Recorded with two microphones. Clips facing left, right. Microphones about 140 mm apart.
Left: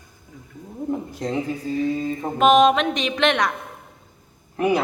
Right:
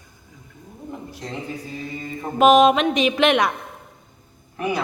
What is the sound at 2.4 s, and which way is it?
Music, 5° right (ahead or behind).